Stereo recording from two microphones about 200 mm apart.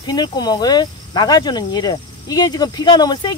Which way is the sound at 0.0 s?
20° left (ahead or behind).